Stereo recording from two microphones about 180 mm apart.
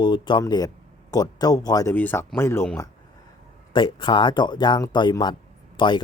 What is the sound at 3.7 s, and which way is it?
Speech, 25° left (ahead or behind).